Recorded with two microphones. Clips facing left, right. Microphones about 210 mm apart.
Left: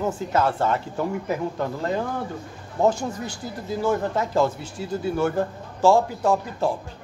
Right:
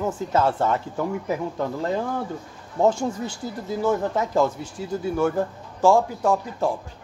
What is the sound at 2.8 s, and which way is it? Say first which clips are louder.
A man's voice: right 1 dB; 25° right (ahead or behind).